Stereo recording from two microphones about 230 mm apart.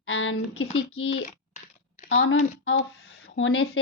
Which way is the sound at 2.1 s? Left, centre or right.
Left.